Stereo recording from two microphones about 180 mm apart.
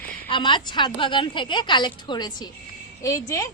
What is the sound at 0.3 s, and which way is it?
A woman's voice, 25° left (ahead or behind).